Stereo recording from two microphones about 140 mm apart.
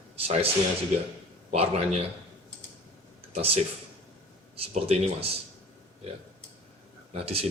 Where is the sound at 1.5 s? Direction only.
50° right (ahead or behind).